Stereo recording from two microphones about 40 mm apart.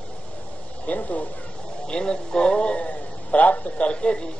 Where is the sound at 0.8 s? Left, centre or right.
Left.